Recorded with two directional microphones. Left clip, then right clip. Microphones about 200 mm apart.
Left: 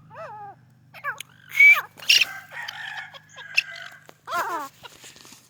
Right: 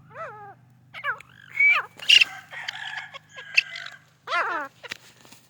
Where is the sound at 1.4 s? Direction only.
Centre (ahead or behind).